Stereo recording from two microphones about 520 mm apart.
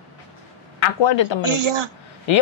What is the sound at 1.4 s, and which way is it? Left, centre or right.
Speech, right.